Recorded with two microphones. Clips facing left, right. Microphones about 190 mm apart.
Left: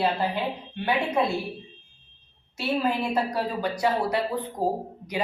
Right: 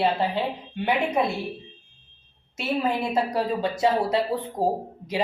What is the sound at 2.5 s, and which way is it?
A woman's voice, 20° right (ahead or behind).